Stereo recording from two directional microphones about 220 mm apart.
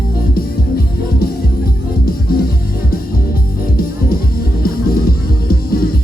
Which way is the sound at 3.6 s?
40° left (ahead or behind).